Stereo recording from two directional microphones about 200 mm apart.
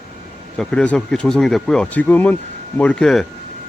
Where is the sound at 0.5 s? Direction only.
5° left (ahead or behind).